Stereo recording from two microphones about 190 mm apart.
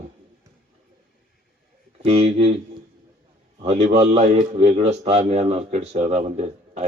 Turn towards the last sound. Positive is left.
turn(degrees=-35)  # may be behind; listen again after turning